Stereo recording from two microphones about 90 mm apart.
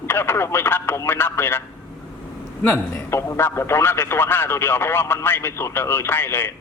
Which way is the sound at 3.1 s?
30° left (ahead or behind).